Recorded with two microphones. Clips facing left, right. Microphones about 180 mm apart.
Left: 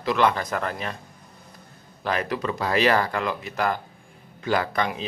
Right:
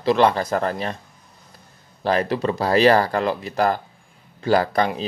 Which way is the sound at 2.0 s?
35° right (ahead or behind).